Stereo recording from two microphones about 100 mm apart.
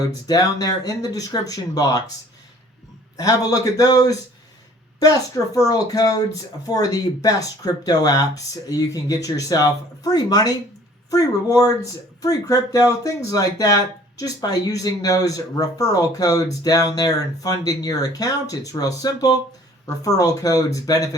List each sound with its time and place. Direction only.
0.3 s speech: 40° left (ahead or behind)
3.2 s speech: 40° left (ahead or behind)